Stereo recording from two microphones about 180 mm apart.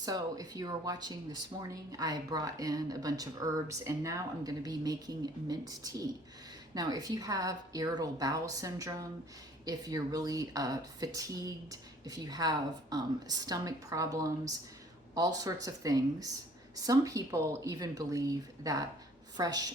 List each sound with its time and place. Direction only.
0.0 s speech: 20° right (ahead or behind)